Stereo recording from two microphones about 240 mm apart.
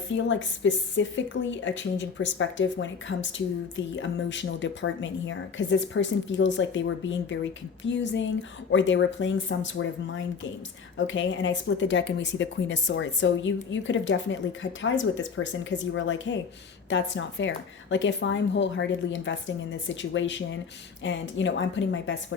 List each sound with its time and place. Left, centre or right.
0.3 s speech: left